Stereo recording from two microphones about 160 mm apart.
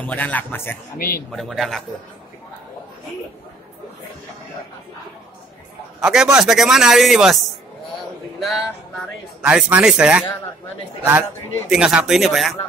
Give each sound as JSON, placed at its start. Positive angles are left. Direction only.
{"t": 0.0, "sound": "a man's voice", "side_deg": 10}
{"t": 0.9, "sound": "speech", "side_deg": 65}
{"t": 1.3, "sound": "chopping", "side_deg": 0}
{"t": 5.9, "sound": "a man's voice", "side_deg": -5}
{"t": 6.3, "sound": "chopping", "side_deg": 0}
{"t": 8.4, "sound": "speech", "side_deg": 0}
{"t": 11.7, "sound": "chopping", "side_deg": -5}